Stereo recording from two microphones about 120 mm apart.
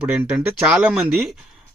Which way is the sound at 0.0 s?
10° right (ahead or behind).